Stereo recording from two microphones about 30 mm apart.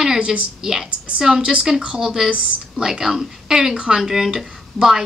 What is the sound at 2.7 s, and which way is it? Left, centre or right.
A woman's voice, right.